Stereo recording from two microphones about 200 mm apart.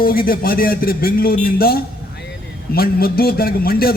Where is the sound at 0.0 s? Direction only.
45° left (ahead or behind).